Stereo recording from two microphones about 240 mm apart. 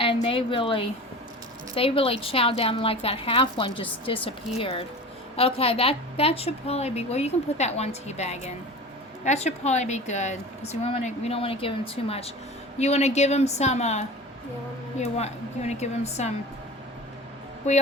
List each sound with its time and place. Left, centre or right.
0.0 s a woman's voice: left
17.7 s a woman's voice: left